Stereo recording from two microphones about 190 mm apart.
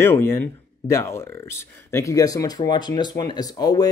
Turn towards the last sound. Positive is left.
turn(degrees=20)  # may be behind; listen again after turning